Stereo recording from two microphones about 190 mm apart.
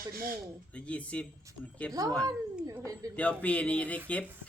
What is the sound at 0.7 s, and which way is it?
Speech, 5° left (ahead or behind).